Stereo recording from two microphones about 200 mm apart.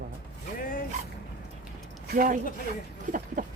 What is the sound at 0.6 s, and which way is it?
Zipper, 45° left (ahead or behind).